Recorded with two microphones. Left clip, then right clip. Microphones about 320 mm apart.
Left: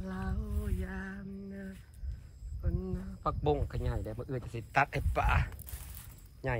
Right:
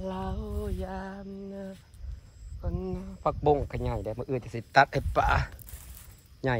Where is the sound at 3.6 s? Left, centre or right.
Right.